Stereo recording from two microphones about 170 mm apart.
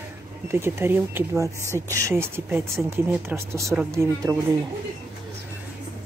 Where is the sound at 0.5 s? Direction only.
15° right (ahead or behind).